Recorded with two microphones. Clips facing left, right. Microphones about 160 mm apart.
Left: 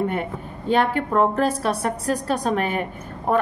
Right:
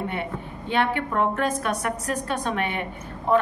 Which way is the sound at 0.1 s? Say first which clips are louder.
Left 3 dB; 40° left (ahead or behind).